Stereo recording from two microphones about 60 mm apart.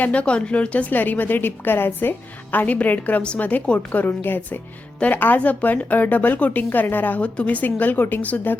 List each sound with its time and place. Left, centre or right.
0.0 s a woman's voice: left